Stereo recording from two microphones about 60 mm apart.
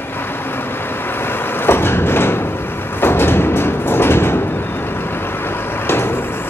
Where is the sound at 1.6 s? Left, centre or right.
Left.